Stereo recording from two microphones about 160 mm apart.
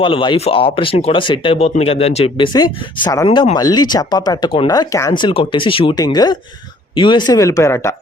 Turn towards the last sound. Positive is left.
turn(degrees=15)  # may be behind; listen again after turning